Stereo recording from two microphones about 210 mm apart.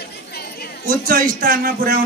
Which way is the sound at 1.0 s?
40° right (ahead or behind).